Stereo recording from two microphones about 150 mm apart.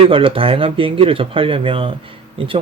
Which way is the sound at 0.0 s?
35° right (ahead or behind).